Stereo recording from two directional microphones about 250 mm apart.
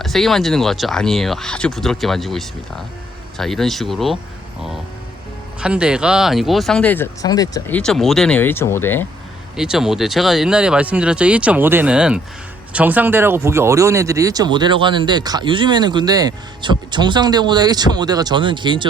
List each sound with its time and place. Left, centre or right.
0.0 s speech: centre
5.5 s speech: centre
7.8 s speech: centre
9.6 s speech: centre